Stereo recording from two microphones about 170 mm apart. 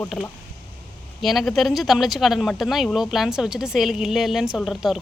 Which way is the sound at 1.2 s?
Centre (ahead or behind).